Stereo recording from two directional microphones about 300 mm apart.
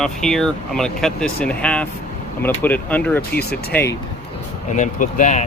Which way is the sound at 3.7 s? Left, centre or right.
Centre.